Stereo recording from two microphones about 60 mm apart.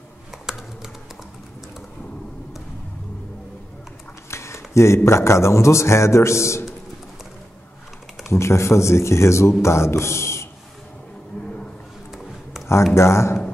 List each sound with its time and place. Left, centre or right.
0.3 s computer keyboard: centre
4.3 s speech: left
8.3 s speech: left
12.6 s a sound: centre
12.9 s speech: left